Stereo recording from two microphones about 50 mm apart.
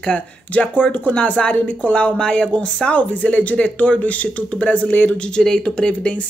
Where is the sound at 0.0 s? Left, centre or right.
Left.